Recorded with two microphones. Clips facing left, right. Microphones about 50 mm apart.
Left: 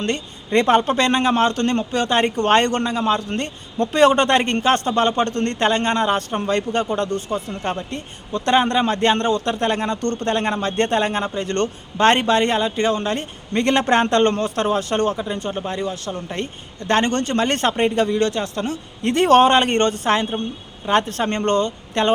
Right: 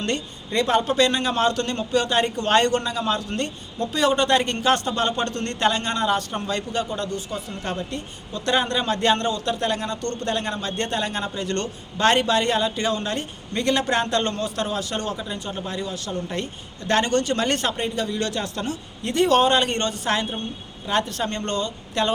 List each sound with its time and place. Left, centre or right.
0.5 s a man's voice: left
3.8 s a man's voice: left
17.7 s speech: left
18.1 s speech: left
19.0 s speech: left
21.0 s speech: left